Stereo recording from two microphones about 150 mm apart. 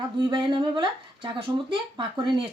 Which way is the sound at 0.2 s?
30° right (ahead or behind).